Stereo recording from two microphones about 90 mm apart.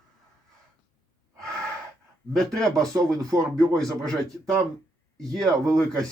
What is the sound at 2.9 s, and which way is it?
Speech, 40° right (ahead or behind).